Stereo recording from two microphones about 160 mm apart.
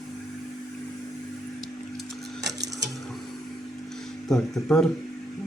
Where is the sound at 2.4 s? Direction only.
90° right.